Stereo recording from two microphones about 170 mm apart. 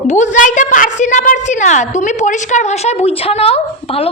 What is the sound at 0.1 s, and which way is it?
A woman's voice, 45° left (ahead or behind).